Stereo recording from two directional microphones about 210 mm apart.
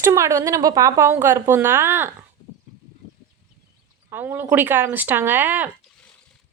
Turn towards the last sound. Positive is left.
turn(degrees=-10)  # may be behind; listen again after turning